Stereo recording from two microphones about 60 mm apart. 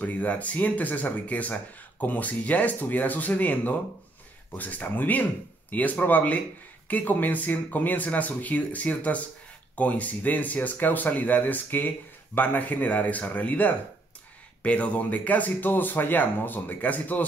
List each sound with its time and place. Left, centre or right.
0.0 s speech: left